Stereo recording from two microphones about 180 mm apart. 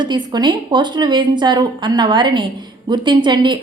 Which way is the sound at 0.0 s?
25° right (ahead or behind).